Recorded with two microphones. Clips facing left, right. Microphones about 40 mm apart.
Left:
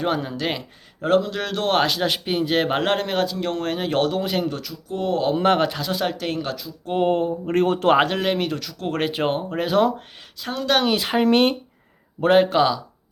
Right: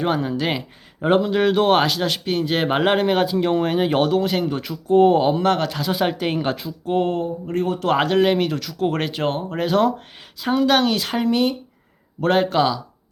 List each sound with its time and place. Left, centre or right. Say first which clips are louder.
0.0 s speech: right 2 dB; centre
1.0 s speech: right 3 dB; centre
4.2 s speech: right 2 dB; centre
4.6 s speech: right 11 dB; right
5.4 s speech: left 1 dB; centre
5.7 s speech: right 3 dB; centre; by 6.7 s right
7.4 s speech: left 3 dB; left
7.9 s speech: right 2 dB; centre
9.0 s speech: even; centre
10.4 s speech: right 4 dB; centre
10.8 s speech: even; centre
11.3 s speech: left 2 dB; left
12.2 s speech: left 1 dB; centre